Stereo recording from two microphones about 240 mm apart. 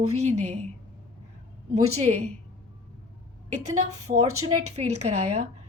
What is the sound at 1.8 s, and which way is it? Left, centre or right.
Speech, right.